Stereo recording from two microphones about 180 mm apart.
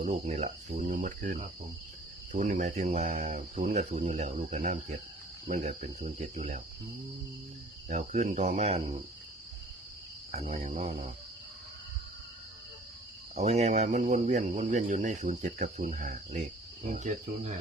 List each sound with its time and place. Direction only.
0.0 s speech: 40° right (ahead or behind)
7.9 s speech: 40° right (ahead or behind)
10.3 s speech: 35° right (ahead or behind)
13.3 s speech: 35° right (ahead or behind)